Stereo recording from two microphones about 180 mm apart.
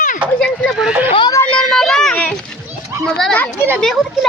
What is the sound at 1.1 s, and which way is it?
Chatter, 25° left (ahead or behind).